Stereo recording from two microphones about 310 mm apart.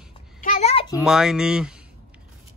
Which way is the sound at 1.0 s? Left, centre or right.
Centre.